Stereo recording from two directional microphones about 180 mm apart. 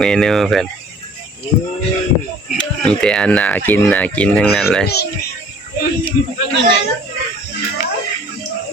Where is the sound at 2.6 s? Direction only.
5° left (ahead or behind).